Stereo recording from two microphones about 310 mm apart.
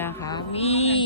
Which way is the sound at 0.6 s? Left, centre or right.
Centre.